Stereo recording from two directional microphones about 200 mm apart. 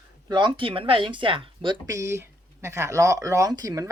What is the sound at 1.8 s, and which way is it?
Speech, 15° right (ahead or behind).